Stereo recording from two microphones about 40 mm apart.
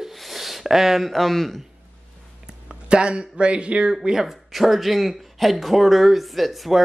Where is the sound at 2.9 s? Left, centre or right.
Right.